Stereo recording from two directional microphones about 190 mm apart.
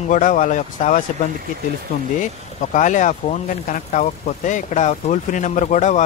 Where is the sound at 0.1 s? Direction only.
40° left (ahead or behind).